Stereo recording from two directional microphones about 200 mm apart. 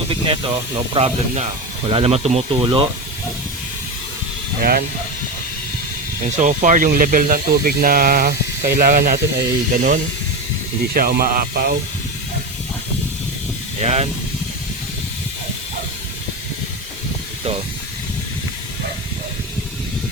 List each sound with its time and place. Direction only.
0.1 s speech: 25° right (ahead or behind)
4.6 s speech: 50° right (ahead or behind)
6.3 s speech: 40° right (ahead or behind)
13.8 s speech: 35° right (ahead or behind)